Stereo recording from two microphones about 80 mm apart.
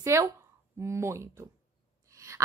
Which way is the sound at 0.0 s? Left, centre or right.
Right.